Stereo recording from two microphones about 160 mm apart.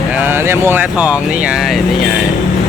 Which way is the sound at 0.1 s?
15° right (ahead or behind).